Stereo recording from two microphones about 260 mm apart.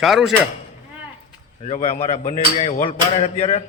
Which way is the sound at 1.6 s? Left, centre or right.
Left.